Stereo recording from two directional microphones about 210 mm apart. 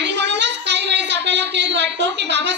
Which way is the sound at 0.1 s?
55° right (ahead or behind).